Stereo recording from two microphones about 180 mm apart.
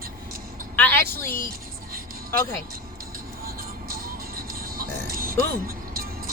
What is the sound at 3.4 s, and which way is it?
Music, 55° right (ahead or behind).